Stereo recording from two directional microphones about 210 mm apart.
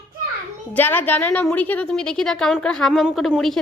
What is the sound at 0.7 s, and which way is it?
A woman's voice, 10° left (ahead or behind).